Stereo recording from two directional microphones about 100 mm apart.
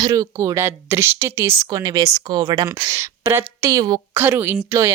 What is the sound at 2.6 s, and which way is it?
Speech, 25° right (ahead or behind).